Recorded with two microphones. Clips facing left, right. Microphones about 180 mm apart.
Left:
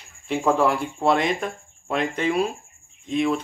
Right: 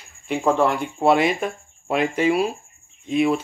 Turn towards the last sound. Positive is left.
turn(degrees=-10)  # may be behind; listen again after turning